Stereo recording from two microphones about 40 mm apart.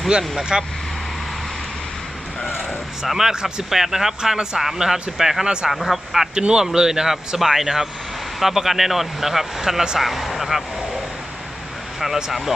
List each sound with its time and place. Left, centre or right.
0.1 s speech: centre
3.1 s speech: centre
6.3 s speech: right; by 10.6 s centre
11.9 s speech: centre